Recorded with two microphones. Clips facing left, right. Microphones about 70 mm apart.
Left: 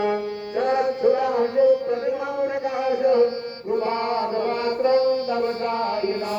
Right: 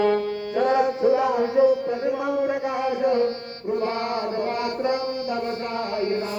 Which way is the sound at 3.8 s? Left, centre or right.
Left.